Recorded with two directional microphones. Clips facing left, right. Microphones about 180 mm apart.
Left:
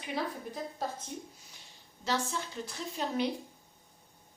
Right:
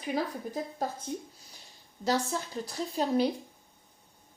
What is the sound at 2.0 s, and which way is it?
Speech, 40° right (ahead or behind).